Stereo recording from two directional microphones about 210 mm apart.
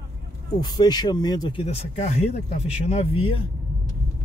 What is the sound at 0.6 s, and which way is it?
Speech, 20° left (ahead or behind).